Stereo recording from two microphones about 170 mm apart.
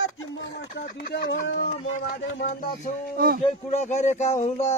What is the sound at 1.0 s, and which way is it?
Speech, 75° left (ahead or behind).